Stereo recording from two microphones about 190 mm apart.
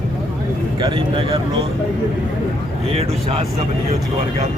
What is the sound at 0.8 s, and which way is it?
Speech, 30° right (ahead or behind).